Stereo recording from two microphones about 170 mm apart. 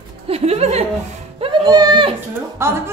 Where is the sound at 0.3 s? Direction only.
40° right (ahead or behind).